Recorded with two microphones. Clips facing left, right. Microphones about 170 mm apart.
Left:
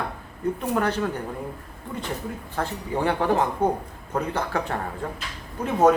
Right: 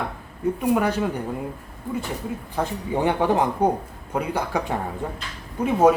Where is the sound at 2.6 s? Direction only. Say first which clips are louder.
Right 2 dB; 15° right (ahead or behind).